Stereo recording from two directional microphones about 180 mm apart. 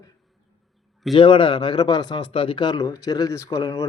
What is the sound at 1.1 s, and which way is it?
A man's voice, 30° left (ahead or behind).